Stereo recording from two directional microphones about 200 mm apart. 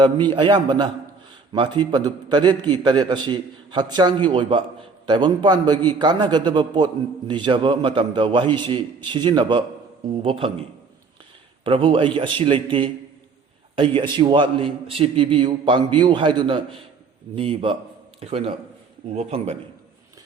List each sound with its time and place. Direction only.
0.3 s a man's voice: 25° right (ahead or behind)
11.6 s a man's voice: 25° right (ahead or behind)